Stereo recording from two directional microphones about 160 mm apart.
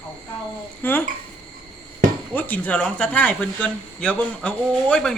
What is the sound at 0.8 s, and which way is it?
Speech, 10° left (ahead or behind).